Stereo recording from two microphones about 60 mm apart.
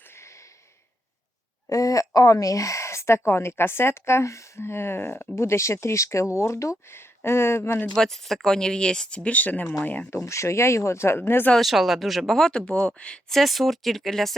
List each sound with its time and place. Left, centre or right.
1.7 s speech: left
4.6 s speech: left
7.2 s speech: left
7.9 s speech: centre; by 10.1 s left
10.2 s speech: left
11.5 s speech: centre
12.5 s speech: centre
13.3 s speech: centre